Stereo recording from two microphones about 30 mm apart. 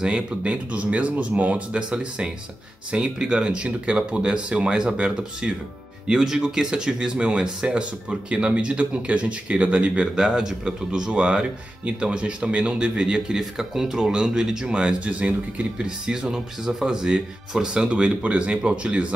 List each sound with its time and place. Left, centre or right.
0.0 s speech: right
0.5 s speech: right
1.8 s speech: right
3.6 s speech: right
6.1 s speech: centre
6.4 s speech: right
10.1 s speech: right
13.6 s speech: centre
15.0 s speech: right
15.8 s speech: right
17.8 s speech: right
18.2 s speech: right